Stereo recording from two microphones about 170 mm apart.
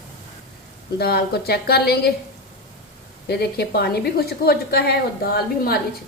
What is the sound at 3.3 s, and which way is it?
A woman's voice, 70° left (ahead or behind).